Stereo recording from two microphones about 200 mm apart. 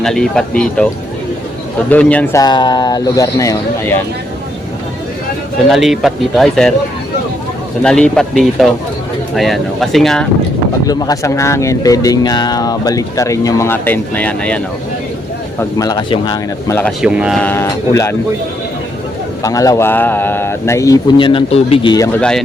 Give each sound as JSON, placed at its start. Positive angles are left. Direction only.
{"t": 0.0, "sound": "speech", "side_deg": 0}
{"t": 1.9, "sound": "speech", "side_deg": 5}
{"t": 2.4, "sound": "speech", "side_deg": 20}
{"t": 5.6, "sound": "speech", "side_deg": 0}
{"t": 7.8, "sound": "speech", "side_deg": 5}
{"t": 10.8, "sound": "speech", "side_deg": 20}
{"t": 15.8, "sound": "a man's voice", "side_deg": 20}
{"t": 17.0, "sound": "speech", "side_deg": -5}
{"t": 17.4, "sound": "speech", "side_deg": 10}
{"t": 19.4, "sound": "speech", "side_deg": 15}